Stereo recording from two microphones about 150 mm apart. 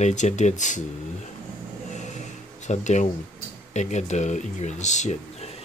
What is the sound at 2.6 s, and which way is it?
Speech, 50° left (ahead or behind).